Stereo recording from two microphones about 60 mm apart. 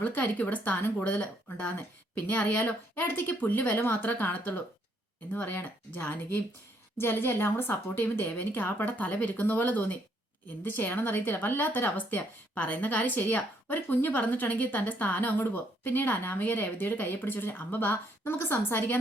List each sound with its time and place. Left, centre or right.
0.0 s speech: left